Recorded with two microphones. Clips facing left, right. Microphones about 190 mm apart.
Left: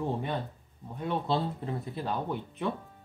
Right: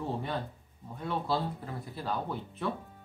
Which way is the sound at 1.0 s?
20° left (ahead or behind).